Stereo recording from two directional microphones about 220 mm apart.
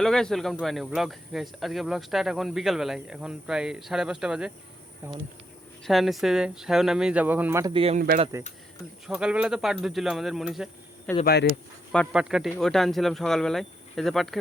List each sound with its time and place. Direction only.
0.0 s speech: centre (ahead or behind)
5.8 s speech: centre (ahead or behind)
7.7 s speech: 25° right (ahead or behind)
8.4 s speech: 10° right (ahead or behind)
11.3 s speech: 45° left (ahead or behind)
11.9 s speech: centre (ahead or behind)